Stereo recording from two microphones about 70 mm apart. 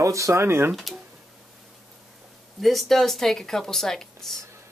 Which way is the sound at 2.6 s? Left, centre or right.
Centre.